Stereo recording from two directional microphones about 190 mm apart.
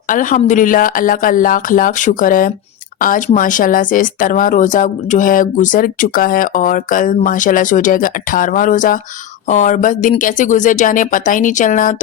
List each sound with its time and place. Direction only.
0.1 s speech: 45° left (ahead or behind)